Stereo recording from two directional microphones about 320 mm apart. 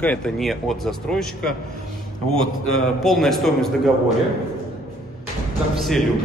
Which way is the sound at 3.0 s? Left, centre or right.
Centre.